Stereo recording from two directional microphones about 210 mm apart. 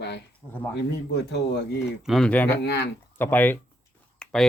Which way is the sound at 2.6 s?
50° left (ahead or behind).